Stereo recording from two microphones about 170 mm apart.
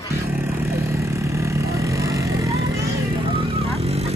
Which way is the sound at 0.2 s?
15° right (ahead or behind).